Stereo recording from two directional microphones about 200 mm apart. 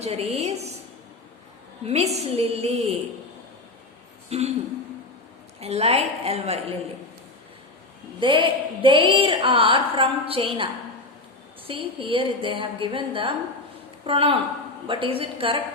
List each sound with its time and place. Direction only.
0.0 s a woman's voice: 30° right (ahead or behind)
2.3 s a woman's voice: 30° right (ahead or behind)
4.3 s a woman's voice: 30° right (ahead or behind)
5.5 s a woman's voice: 30° right (ahead or behind)
8.2 s a woman's voice: 25° right (ahead or behind)